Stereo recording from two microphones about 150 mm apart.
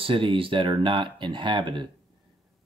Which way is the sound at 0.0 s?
35° right (ahead or behind).